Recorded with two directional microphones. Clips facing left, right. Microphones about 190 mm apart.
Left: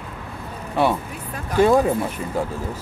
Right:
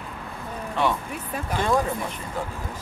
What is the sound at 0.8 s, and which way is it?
Speech, 10° left (ahead or behind).